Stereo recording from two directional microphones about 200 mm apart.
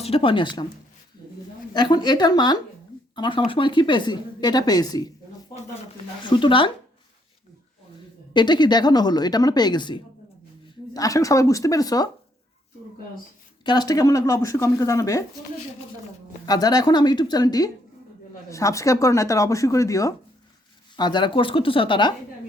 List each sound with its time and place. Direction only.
0.0 s a woman's voice: 30° left (ahead or behind)
1.7 s a woman's voice: 20° left (ahead or behind)
6.2 s a woman's voice: 25° left (ahead or behind)
8.3 s a woman's voice: 20° left (ahead or behind)
13.7 s speech: 20° left (ahead or behind)
16.5 s a woman's voice: 20° left (ahead or behind)